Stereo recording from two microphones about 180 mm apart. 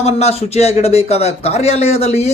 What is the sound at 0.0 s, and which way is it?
A man's voice, 35° left (ahead or behind).